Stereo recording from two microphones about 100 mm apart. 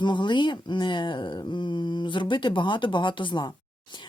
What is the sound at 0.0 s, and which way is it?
Speech, 50° left (ahead or behind).